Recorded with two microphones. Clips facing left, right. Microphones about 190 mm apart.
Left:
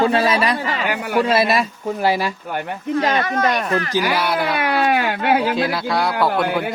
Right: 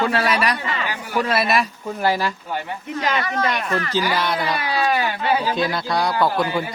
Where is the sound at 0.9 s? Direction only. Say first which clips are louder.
Left 6 dB; 65° left (ahead or behind).